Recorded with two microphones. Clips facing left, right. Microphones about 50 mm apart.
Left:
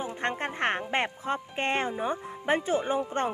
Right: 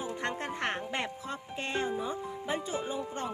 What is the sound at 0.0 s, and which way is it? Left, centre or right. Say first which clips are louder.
Speech: left 4 dB; left.